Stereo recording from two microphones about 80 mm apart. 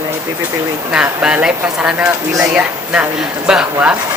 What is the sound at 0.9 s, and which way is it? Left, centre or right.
Speech, centre.